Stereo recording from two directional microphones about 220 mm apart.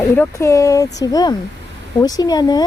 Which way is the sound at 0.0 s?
10° left (ahead or behind).